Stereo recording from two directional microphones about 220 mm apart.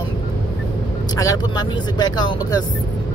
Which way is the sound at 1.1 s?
15° left (ahead or behind).